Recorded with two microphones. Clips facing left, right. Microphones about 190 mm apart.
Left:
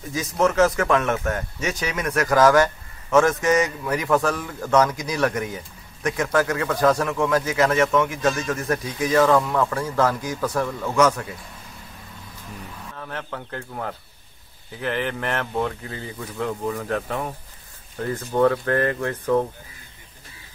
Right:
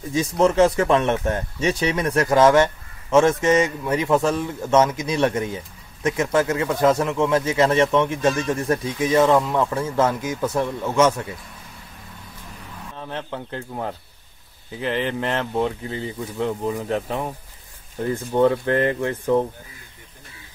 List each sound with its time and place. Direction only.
0.1 s speech: 30° right (ahead or behind)
12.9 s speech: 20° right (ahead or behind)